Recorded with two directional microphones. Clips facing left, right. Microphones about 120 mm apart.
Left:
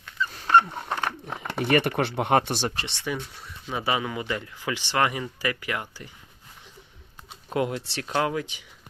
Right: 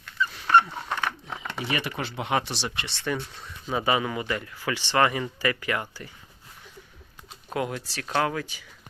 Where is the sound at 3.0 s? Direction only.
10° left (ahead or behind).